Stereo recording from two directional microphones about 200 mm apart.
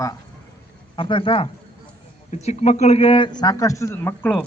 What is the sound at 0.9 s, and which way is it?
A man's voice, 25° left (ahead or behind).